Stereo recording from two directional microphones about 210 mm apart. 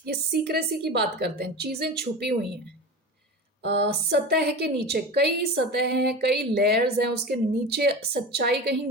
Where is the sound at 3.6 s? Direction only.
55° right (ahead or behind).